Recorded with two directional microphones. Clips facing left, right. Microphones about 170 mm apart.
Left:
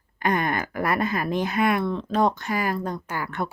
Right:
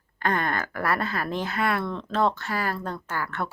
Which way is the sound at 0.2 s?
15° left (ahead or behind).